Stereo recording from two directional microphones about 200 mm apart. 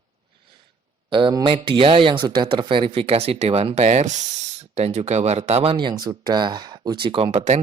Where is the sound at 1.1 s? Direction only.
25° right (ahead or behind).